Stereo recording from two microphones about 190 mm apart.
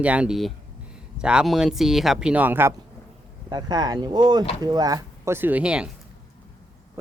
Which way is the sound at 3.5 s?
20° right (ahead or behind).